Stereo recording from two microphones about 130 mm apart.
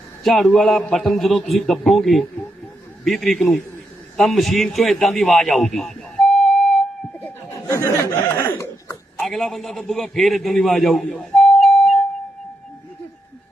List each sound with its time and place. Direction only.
0.2 s a man's voice: centre (ahead or behind)
7.1 s chuckle: 15° left (ahead or behind)
7.6 s speech: 25° left (ahead or behind)
9.2 s a man's voice: centre (ahead or behind)
11.1 s a sound: centre (ahead or behind)